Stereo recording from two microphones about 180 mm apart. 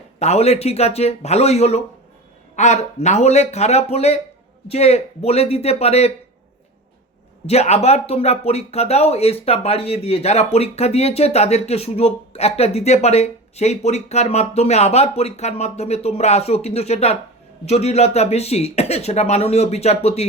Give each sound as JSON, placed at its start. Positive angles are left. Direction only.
{"t": 0.2, "sound": "speech", "side_deg": 35}
{"t": 7.4, "sound": "speech", "side_deg": 35}